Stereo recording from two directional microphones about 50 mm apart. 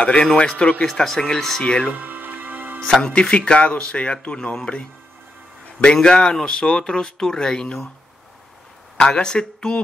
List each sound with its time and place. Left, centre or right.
0.0 s speech: left
1.0 s speech: centre
2.0 s music: right
2.9 s speech: centre
5.9 s speech: centre
8.9 s speech: centre